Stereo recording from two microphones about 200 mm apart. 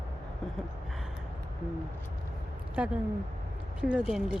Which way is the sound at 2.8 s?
10° right (ahead or behind).